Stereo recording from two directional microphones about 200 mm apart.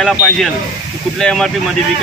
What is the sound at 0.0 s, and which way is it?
Speech, centre (ahead or behind).